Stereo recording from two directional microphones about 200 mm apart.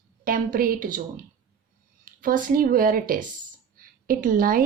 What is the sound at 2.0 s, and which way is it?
A woman's voice, 45° right (ahead or behind).